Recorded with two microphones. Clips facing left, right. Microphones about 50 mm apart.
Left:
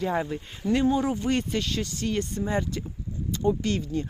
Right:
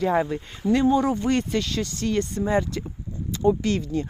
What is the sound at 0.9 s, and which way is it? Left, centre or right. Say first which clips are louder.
Speech: right 4 dB; right.